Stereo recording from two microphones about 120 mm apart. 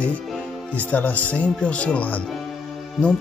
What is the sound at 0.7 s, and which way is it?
Music, 15° left (ahead or behind).